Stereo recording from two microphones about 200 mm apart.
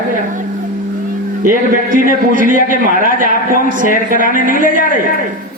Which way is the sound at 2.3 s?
40° right (ahead or behind).